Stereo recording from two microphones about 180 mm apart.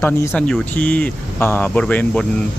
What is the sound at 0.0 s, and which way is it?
Speech, 10° left (ahead or behind).